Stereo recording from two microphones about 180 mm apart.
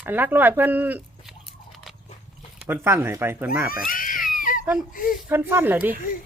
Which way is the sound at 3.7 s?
50° left (ahead or behind).